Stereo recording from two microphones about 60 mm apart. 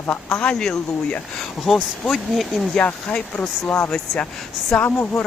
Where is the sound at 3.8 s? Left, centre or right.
Centre.